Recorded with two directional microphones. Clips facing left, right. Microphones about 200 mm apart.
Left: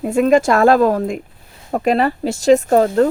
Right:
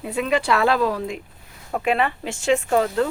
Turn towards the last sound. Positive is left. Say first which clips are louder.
# left 7 dB
turn(degrees=40)  # may be behind; listen again after turning